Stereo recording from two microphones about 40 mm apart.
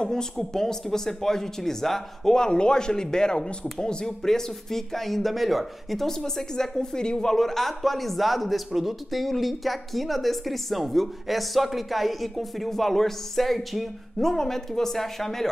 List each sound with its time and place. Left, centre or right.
0.0 s a woman's voice: centre
6.0 s a woman's voice: centre